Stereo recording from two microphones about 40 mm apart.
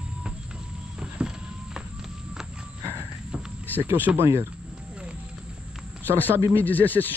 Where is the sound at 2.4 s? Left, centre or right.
Centre.